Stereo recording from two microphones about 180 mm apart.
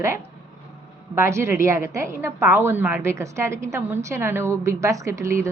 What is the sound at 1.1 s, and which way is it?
A woman's voice, 15° right (ahead or behind).